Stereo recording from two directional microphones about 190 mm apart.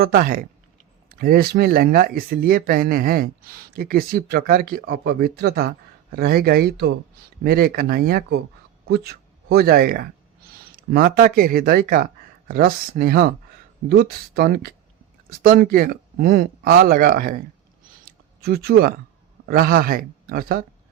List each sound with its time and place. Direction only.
0.0 s speech: 50° right (ahead or behind)
18.4 s speech: 55° right (ahead or behind)